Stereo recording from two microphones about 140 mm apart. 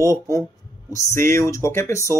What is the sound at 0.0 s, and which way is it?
Speech, 20° left (ahead or behind).